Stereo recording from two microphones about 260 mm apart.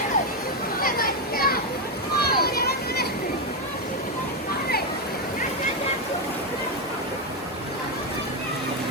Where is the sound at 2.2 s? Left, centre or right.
Left.